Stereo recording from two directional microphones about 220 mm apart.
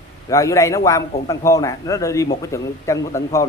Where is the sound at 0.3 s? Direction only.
15° left (ahead or behind).